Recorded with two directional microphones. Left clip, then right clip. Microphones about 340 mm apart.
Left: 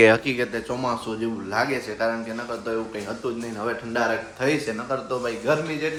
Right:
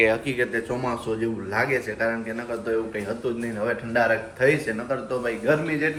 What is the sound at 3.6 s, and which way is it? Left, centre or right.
Speech, centre.